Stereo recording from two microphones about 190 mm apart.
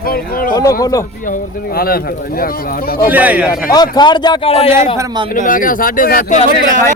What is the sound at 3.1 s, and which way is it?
Speech, 10° right (ahead or behind).